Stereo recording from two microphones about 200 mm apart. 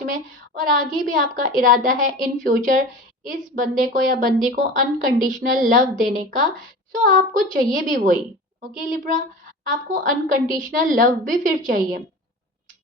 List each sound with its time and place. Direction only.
0.0 s a woman's voice: 40° right (ahead or behind)
9.6 s a woman's voice: 45° right (ahead or behind)